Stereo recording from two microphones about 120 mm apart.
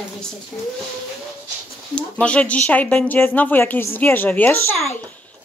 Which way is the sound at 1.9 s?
10° left (ahead or behind).